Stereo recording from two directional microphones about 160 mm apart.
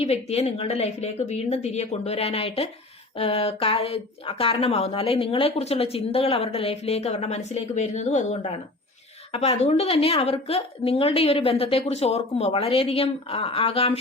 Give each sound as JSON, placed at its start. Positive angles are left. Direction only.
{"t": 0.0, "sound": "a woman's voice", "side_deg": 40}